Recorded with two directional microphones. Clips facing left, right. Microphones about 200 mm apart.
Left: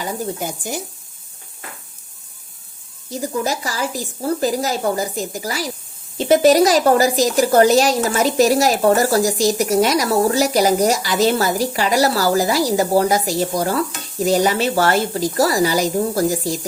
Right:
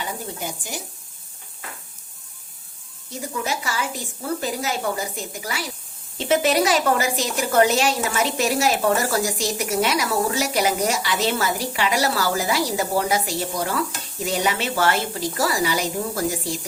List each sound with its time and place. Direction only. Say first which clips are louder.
0.0 s speech: left 6 dB; 45° left (ahead or behind)
3.1 s a woman's voice: left 6 dB; 40° left (ahead or behind)